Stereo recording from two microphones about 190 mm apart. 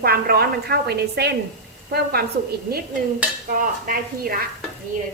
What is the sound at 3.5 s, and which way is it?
Speech, 50° right (ahead or behind).